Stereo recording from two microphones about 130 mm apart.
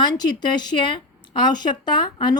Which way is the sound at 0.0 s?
30° left (ahead or behind).